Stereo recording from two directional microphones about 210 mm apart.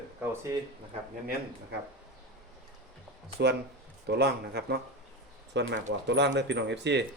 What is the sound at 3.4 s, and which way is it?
Speech, 55° right (ahead or behind).